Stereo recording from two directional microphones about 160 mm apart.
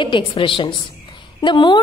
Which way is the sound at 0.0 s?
30° left (ahead or behind).